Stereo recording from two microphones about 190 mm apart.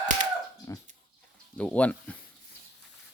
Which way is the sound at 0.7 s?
15° left (ahead or behind).